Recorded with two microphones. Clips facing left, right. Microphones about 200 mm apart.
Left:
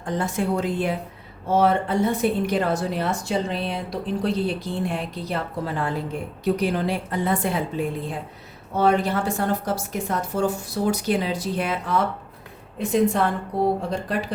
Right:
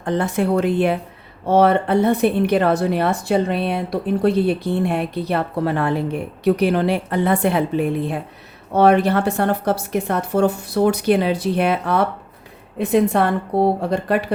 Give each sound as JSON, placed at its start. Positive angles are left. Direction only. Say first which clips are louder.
{"t": 0.0, "sound": "a woman's voice", "louder": "right 5 dB", "side_deg": -65}